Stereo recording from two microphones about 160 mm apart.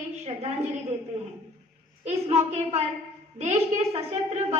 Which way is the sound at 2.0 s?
45° right (ahead or behind).